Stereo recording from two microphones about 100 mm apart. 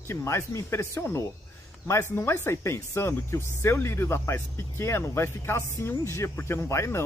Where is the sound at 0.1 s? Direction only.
25° left (ahead or behind).